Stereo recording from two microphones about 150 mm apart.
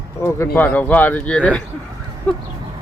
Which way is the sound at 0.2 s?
10° left (ahead or behind).